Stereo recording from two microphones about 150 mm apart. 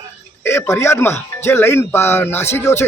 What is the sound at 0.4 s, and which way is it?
A man's voice, 20° left (ahead or behind).